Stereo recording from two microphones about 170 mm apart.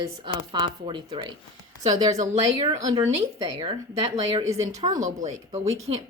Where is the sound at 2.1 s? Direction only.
45° right (ahead or behind).